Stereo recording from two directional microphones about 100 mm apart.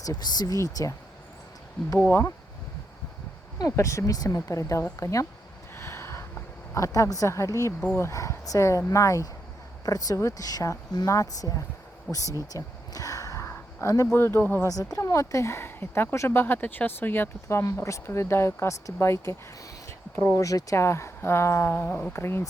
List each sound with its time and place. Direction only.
0.0 s speech: 40° left (ahead or behind)
2.0 s speech: 25° left (ahead or behind)
3.8 s speech: 30° left (ahead or behind)
5.7 s a sound: 25° left (ahead or behind)
6.7 s speech: 30° left (ahead or behind)
7.8 s speech: 20° left (ahead or behind); by 11.6 s 35° left (ahead or behind)
12.1 s speech: 15° left (ahead or behind)
12.5 s a sound: 35° left (ahead or behind)
14.1 s speech: 25° left (ahead or behind)
14.9 s speech: 30° left (ahead or behind)